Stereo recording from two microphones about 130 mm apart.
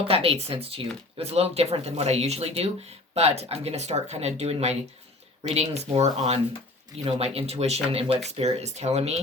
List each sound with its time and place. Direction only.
0.1 s speech: 50° right (ahead or behind)